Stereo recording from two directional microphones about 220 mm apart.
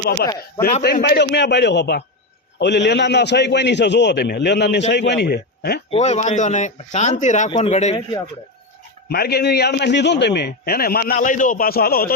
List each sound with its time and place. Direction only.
0.8 s a man's voice: 50° left (ahead or behind)
5.9 s speech: 30° left (ahead or behind)
9.0 s a man's voice: 45° left (ahead or behind)